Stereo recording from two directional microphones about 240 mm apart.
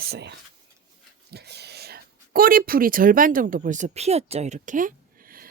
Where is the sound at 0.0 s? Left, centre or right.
Right.